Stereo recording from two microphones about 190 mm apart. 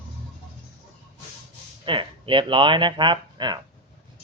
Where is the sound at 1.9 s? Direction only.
25° right (ahead or behind).